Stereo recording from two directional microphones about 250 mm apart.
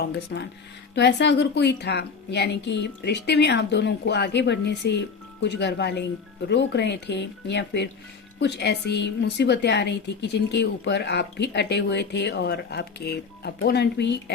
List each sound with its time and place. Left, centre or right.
0.3 s speech: left